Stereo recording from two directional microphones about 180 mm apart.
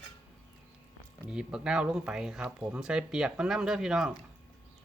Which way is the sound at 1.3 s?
5° right (ahead or behind).